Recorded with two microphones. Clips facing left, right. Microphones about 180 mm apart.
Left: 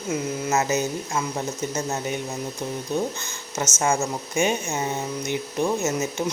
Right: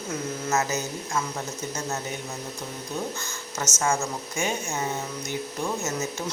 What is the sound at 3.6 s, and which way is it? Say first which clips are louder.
Speech: left 3 dB; 20° left (ahead or behind).